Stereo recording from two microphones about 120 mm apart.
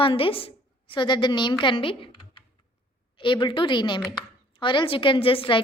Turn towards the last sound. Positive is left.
turn(degrees=45)  # may be behind; listen again after turning